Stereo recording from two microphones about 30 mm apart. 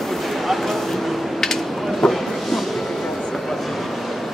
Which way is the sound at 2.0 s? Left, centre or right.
Centre.